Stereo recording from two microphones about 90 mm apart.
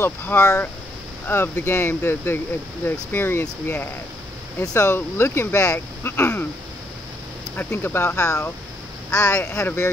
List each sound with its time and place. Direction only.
0.0 s speech: 20° left (ahead or behind)
7.5 s speech: 25° left (ahead or behind)